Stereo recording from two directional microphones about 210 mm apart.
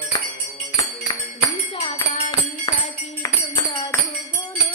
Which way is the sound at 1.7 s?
25° left (ahead or behind).